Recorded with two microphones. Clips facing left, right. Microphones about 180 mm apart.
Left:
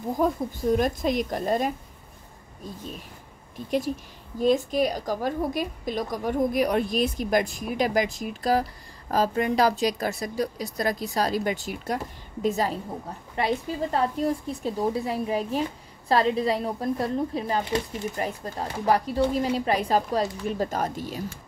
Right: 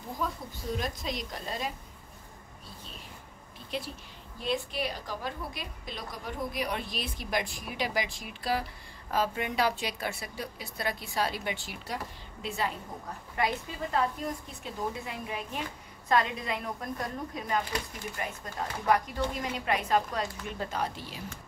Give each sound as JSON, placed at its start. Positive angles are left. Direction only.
{"t": 0.2, "sound": "a woman's voice", "side_deg": 50}
{"t": 4.4, "sound": "a woman's voice", "side_deg": 45}